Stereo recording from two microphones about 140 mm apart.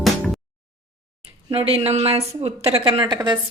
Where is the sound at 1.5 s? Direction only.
40° right (ahead or behind).